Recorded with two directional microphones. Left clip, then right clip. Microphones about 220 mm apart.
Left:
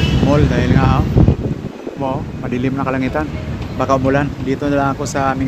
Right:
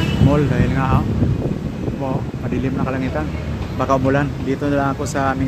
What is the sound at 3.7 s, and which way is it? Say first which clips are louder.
Speech: left 2 dB; 5° left (ahead or behind).